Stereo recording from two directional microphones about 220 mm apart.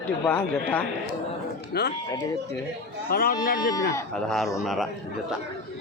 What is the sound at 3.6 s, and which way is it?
Speech, 15° left (ahead or behind).